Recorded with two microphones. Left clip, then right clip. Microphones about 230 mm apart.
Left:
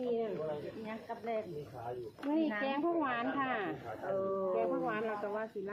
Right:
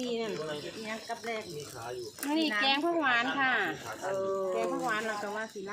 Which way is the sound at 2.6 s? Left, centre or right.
Right.